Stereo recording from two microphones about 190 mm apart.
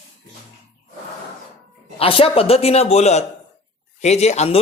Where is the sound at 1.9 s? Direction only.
30° left (ahead or behind).